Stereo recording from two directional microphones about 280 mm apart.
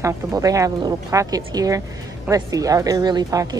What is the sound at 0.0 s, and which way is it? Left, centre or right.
Speech, centre.